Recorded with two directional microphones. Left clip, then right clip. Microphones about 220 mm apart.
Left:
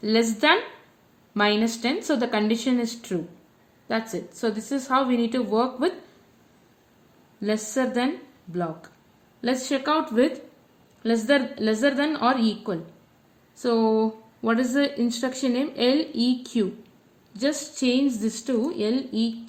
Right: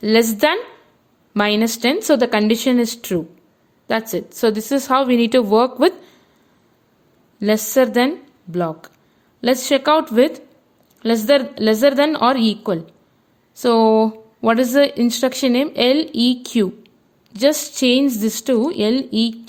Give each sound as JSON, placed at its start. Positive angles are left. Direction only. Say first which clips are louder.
{"t": 0.0, "sound": "speech", "louder": "right 7 dB", "side_deg": -50}
{"t": 7.3, "sound": "speech", "louder": "right 10 dB", "side_deg": -50}